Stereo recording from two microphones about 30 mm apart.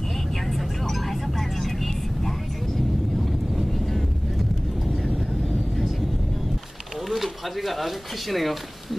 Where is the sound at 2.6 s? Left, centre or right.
Centre.